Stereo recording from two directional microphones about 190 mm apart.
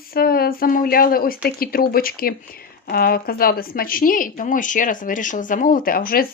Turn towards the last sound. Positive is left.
turn(degrees=50)  # may be behind; listen again after turning